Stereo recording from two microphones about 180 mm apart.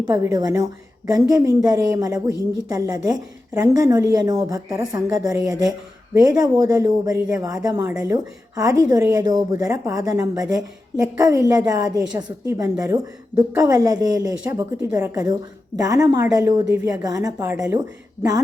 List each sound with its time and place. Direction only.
0.1 s a woman's voice: 20° right (ahead or behind)
3.5 s a woman's voice: 10° right (ahead or behind)